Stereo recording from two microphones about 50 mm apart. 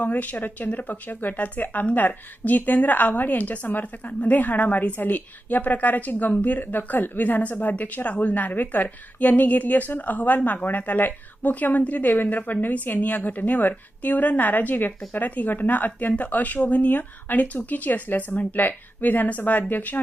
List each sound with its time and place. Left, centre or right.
0.0 s speech: left